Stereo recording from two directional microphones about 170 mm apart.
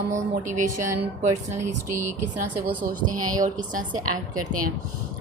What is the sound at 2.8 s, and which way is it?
A woman's voice, 50° right (ahead or behind).